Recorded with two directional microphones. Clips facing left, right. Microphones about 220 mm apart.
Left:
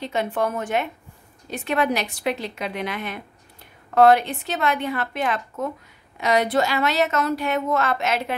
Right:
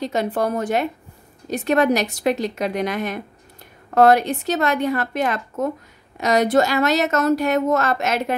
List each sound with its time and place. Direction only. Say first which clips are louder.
0.0 s a woman's voice: right 3 dB; 40° right (ahead or behind)